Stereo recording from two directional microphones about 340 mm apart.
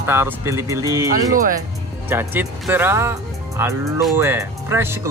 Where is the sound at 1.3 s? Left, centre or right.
Right.